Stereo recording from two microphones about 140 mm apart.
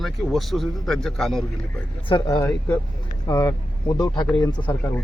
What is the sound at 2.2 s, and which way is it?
Speech, 20° left (ahead or behind).